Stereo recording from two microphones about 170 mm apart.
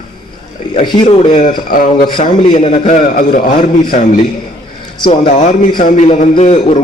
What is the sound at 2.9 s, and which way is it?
A man's voice, 55° left (ahead or behind).